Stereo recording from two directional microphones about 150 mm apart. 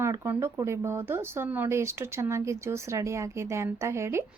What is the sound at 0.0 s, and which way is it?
Speech, 20° right (ahead or behind).